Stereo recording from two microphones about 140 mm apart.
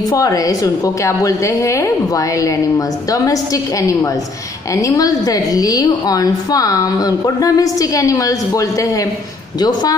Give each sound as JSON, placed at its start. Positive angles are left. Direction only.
{"t": 0.1, "sound": "a woman's voice", "side_deg": 25}